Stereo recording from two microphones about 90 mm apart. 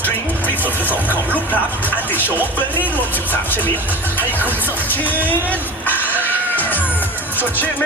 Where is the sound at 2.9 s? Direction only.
20° left (ahead or behind).